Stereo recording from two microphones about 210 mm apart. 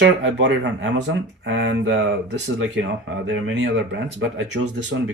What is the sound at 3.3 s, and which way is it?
Speech, 55° right (ahead or behind).